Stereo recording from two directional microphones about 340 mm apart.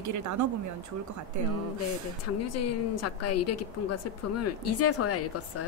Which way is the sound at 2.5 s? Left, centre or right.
Left.